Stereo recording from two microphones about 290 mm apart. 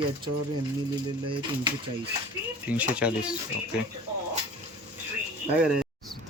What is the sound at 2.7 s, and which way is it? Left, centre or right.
Speech, centre.